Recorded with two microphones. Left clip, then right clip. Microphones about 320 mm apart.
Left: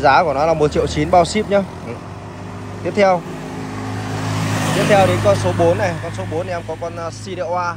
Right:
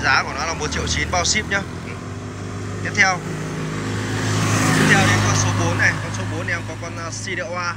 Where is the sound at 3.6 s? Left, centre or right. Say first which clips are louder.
Even; left.